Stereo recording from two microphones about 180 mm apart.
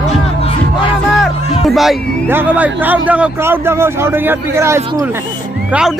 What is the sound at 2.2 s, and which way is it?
Speech, 10° right (ahead or behind).